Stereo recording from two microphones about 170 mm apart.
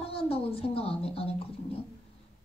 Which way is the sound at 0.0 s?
35° left (ahead or behind).